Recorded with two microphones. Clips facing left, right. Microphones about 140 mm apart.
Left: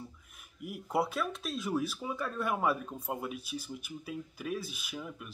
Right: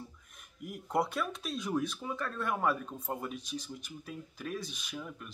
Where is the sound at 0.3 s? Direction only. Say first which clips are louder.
Left 1 dB; 5° left (ahead or behind).